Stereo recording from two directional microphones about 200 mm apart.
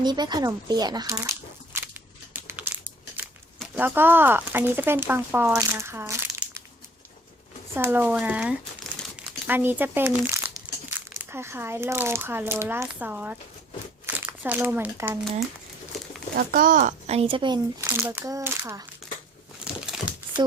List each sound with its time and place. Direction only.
0.0 s a sound: 20° right (ahead or behind)
3.8 s speech: 10° right (ahead or behind)
7.8 s speech: 10° right (ahead or behind)
16.3 s speech: 45° right (ahead or behind); by 17.8 s 20° right (ahead or behind)
17.8 s speech: 5° right (ahead or behind)
19.8 s crumpling: 5° right (ahead or behind)